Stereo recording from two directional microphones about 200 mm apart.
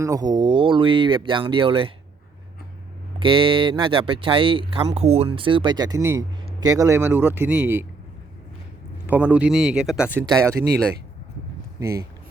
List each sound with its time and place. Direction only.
0.0 s speech: 20° right (ahead or behind)
3.2 s speech: 25° right (ahead or behind)
9.0 s speech: 10° right (ahead or behind)
11.8 s speech: 15° right (ahead or behind)